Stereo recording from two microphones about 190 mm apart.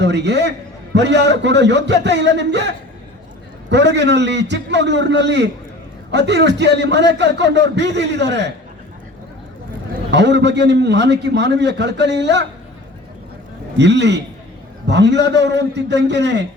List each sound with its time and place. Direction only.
0.0 s a man's voice: 65° right (ahead or behind)
10.1 s a man's voice: 65° right (ahead or behind)
13.7 s a man's voice: 65° right (ahead or behind)